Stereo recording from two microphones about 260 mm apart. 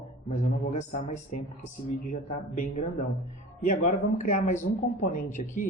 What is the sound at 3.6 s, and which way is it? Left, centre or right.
A man's voice, left.